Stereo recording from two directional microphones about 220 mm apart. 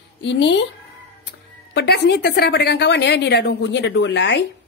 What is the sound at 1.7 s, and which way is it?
A woman's voice, 50° left (ahead or behind).